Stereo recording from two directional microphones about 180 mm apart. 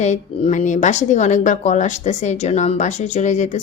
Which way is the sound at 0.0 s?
40° left (ahead or behind).